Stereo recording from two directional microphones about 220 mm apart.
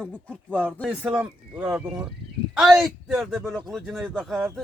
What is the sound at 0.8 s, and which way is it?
Speech, 5° right (ahead or behind).